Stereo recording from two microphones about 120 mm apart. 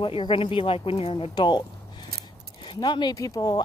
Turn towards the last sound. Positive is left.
turn(degrees=35)  # may be behind; listen again after turning